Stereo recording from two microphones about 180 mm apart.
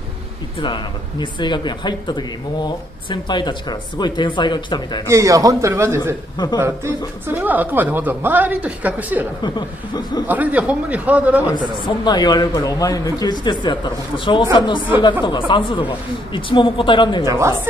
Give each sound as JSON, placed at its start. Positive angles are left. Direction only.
{"t": 1.2, "sound": "speech", "side_deg": 25}
{"t": 5.0, "sound": "a woman's voice", "side_deg": -15}
{"t": 6.3, "sound": "speech", "side_deg": 25}
{"t": 7.2, "sound": "a woman's voice", "side_deg": -10}
{"t": 11.8, "sound": "speech", "side_deg": 25}
{"t": 17.3, "sound": "a woman's voice", "side_deg": -15}